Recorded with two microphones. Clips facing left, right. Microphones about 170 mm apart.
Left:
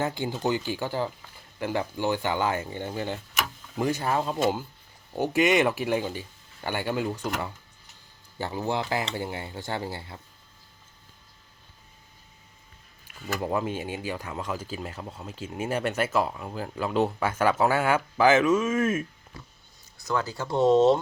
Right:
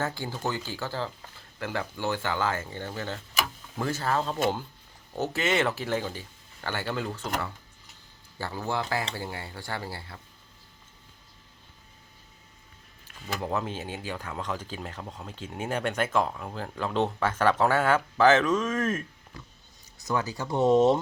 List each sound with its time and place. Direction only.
0.0 s speech: 20° left (ahead or behind)
13.2 s speech: 10° left (ahead or behind)
20.1 s speech: 15° right (ahead or behind)